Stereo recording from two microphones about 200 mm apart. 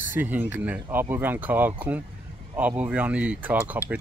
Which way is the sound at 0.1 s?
10° right (ahead or behind).